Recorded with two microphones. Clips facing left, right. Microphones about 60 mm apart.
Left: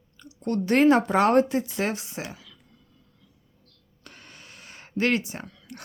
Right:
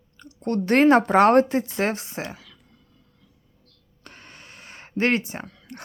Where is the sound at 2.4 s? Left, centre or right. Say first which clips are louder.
Right 1 dB; right.